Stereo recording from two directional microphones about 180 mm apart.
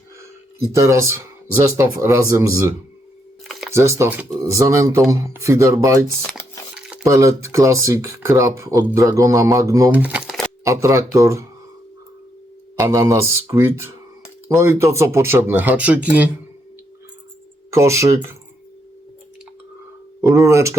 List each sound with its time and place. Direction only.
0.7 s speech: 15° right (ahead or behind)
3.4 s a sound: centre (ahead or behind)
3.8 s speech: 15° right (ahead or behind); by 10.5 s centre (ahead or behind)
10.6 s speech: 15° right (ahead or behind)
12.8 s speech: 15° right (ahead or behind)
17.7 s speech: 15° right (ahead or behind)
20.5 s speech: 15° right (ahead or behind)